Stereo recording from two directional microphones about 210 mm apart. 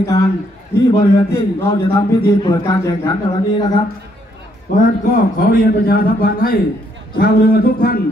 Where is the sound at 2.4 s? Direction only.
20° left (ahead or behind).